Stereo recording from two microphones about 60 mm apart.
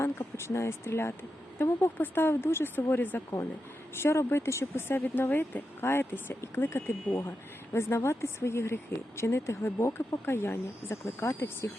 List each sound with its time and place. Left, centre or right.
0.0 s speech: left
3.9 s speech: left